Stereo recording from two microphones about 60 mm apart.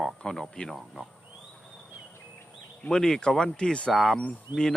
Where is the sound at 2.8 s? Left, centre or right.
Centre.